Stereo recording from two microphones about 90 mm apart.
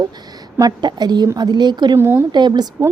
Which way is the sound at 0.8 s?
55° right (ahead or behind).